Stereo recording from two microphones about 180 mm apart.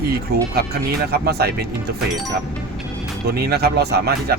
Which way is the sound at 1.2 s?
60° right (ahead or behind).